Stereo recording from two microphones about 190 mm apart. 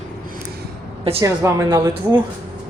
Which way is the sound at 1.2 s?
15° right (ahead or behind).